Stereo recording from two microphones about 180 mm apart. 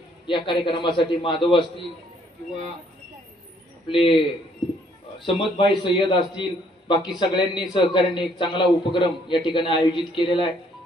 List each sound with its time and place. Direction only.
0.3 s a man's voice: 25° left (ahead or behind)
3.9 s a man's voice: 30° left (ahead or behind)
5.2 s a man's voice: 30° left (ahead or behind)